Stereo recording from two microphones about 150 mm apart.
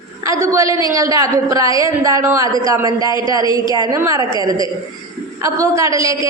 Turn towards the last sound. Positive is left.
turn(degrees=-20)  # may be behind; listen again after turning